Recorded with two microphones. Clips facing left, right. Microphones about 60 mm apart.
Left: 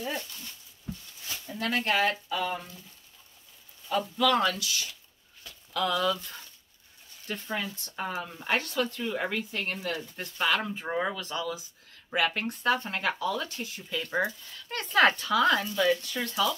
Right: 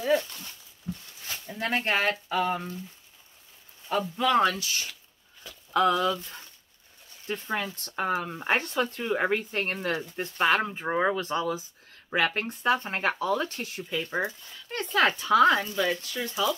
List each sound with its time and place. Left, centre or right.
1.6 s speech: right
3.9 s speech: right
7.5 s speech: right
10.1 s speech: right
12.4 s speech: centre
12.8 s speech: right
13.8 s speech: centre
15.0 s speech: centre
15.2 s speech: right
15.7 s speech: centre
16.0 s speech: centre
16.3 s speech: centre